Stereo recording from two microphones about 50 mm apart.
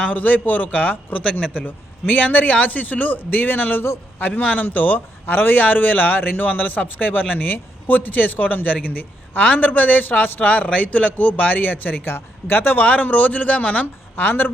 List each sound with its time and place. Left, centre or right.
0.0 s a man's voice: left
14.2 s a man's voice: left